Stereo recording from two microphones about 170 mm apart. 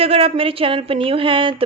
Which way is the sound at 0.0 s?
35° right (ahead or behind).